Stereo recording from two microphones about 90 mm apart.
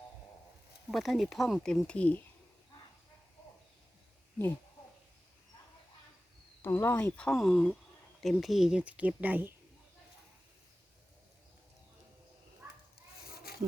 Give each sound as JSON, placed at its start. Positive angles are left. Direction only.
{"t": 0.9, "sound": "speech", "side_deg": 0}
{"t": 6.6, "sound": "speech", "side_deg": 30}
{"t": 6.9, "sound": "speech", "side_deg": 15}
{"t": 7.3, "sound": "speech", "side_deg": 5}